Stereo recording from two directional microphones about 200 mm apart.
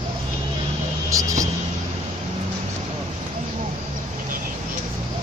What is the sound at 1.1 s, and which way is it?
Vehicle, 15° right (ahead or behind).